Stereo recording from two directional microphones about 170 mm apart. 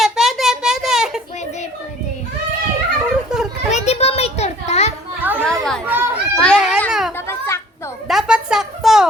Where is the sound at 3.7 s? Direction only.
40° left (ahead or behind).